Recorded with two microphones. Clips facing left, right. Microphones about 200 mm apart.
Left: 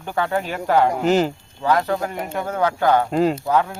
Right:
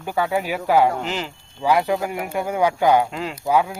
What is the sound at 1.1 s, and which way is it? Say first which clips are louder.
Speech: left 11 dB; 45° left (ahead or behind).